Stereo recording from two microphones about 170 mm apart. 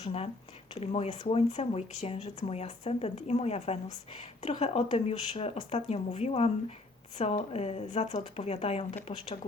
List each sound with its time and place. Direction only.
0.0 s speech: 35° left (ahead or behind)